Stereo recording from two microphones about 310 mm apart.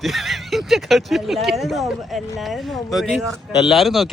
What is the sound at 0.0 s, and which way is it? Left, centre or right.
Speech, centre.